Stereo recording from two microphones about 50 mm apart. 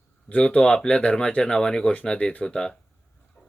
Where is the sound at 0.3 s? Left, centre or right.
Left.